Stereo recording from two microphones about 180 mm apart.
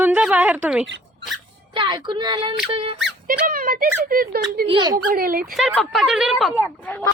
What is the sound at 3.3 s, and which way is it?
Speech, 50° right (ahead or behind).